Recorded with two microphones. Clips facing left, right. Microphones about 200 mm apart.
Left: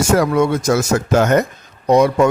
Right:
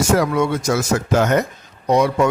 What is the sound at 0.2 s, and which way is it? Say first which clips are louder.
Speech: left 3 dB; 45° left (ahead or behind).